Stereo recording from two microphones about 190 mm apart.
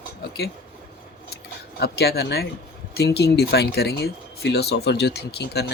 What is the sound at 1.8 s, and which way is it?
Speech, 55° left (ahead or behind).